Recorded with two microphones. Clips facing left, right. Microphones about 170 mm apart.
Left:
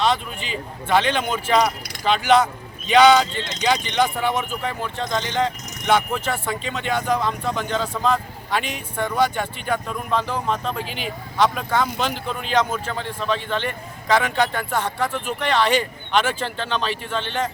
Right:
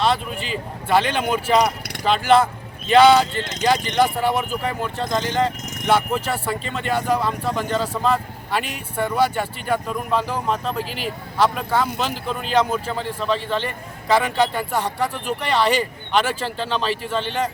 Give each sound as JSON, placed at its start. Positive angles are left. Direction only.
{"t": 0.9, "sound": "speech", "side_deg": -5}